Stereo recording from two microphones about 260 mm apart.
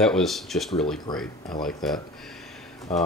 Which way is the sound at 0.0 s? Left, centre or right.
Centre.